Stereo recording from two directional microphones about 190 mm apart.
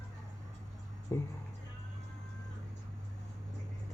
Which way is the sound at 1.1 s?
10° left (ahead or behind).